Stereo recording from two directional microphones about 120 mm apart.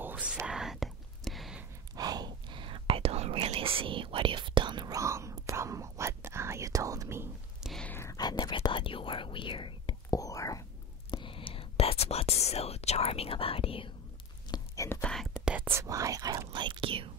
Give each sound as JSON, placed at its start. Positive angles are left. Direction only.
{"t": 0.0, "sound": "whispering", "side_deg": -10}
{"t": 2.0, "sound": "whispering", "side_deg": -35}
{"t": 7.8, "sound": "whispering", "side_deg": 15}
{"t": 8.1, "sound": "whispering", "side_deg": 35}
{"t": 10.1, "sound": "whispering", "side_deg": 30}
{"t": 11.1, "sound": "whispering", "side_deg": 45}
{"t": 14.5, "sound": "whispering", "side_deg": 35}
{"t": 14.9, "sound": "whispering", "side_deg": 10}
{"t": 15.4, "sound": "whispering", "side_deg": -15}